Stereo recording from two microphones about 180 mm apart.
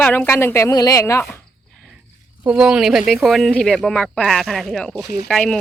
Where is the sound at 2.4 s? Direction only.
5° right (ahead or behind).